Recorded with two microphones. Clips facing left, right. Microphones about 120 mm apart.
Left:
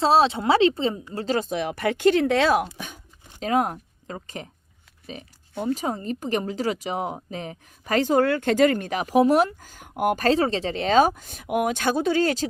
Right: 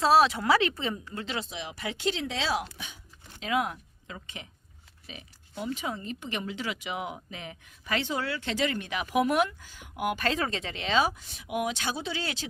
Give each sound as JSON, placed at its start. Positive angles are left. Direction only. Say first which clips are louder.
{"t": 0.0, "sound": "a woman's voice", "louder": "left 3 dB", "side_deg": 25}